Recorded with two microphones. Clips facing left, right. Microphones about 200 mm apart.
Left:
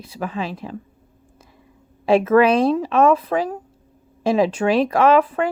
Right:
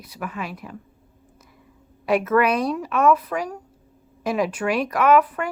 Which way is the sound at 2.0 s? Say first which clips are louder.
Left 5 dB; 30° left (ahead or behind).